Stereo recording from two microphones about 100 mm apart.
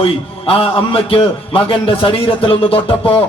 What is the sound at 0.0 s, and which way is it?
A man's voice, 70° left (ahead or behind).